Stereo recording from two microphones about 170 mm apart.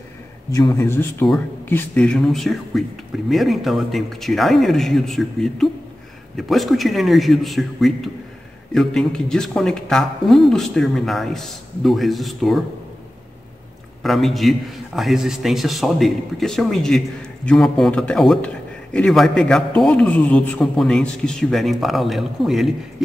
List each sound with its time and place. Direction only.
0.6 s a man's voice: 20° left (ahead or behind); by 12.6 s centre (ahead or behind)
14.0 s a man's voice: centre (ahead or behind)